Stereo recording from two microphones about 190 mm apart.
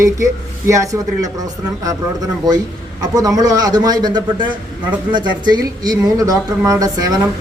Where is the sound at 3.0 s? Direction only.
20° right (ahead or behind).